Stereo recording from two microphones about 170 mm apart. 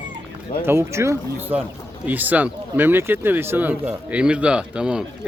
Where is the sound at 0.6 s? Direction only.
15° right (ahead or behind).